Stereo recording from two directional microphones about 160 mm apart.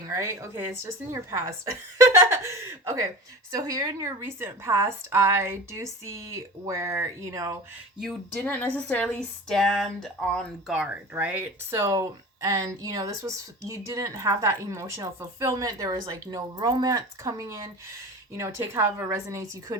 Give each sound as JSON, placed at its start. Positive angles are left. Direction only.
{"t": 0.0, "sound": "a woman's voice", "side_deg": -15}
{"t": 8.0, "sound": "a woman's voice", "side_deg": 5}